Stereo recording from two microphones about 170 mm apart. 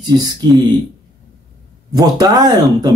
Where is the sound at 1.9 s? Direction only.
20° right (ahead or behind).